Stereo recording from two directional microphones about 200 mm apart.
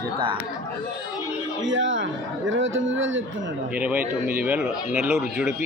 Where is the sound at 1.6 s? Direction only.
70° right (ahead or behind).